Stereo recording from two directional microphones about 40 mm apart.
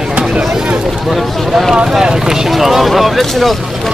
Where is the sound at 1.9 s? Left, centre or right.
Centre.